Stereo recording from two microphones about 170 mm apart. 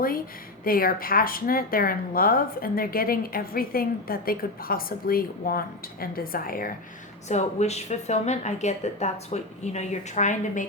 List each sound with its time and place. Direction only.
0.6 s speech: 60° left (ahead or behind)
7.3 s a woman's voice: 40° left (ahead or behind)